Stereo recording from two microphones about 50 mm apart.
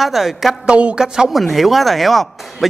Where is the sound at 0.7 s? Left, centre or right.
Right.